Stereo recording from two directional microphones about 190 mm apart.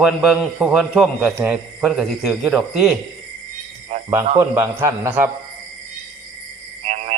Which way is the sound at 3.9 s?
35° right (ahead or behind).